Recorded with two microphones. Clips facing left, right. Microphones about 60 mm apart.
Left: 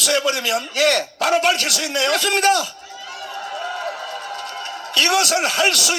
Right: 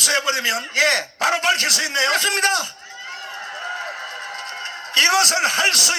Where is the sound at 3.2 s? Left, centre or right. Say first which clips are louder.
Left 5 dB; right.